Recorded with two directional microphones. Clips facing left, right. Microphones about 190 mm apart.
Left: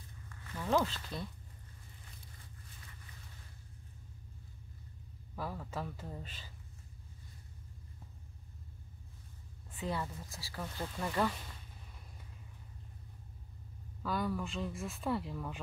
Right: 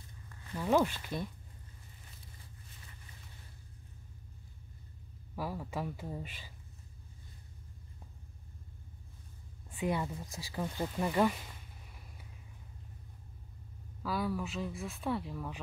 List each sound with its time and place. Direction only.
0.6 s speech: 15° right (ahead or behind)
5.3 s speech: 10° right (ahead or behind)
9.8 s speech: 15° right (ahead or behind)
14.0 s speech: 5° right (ahead or behind)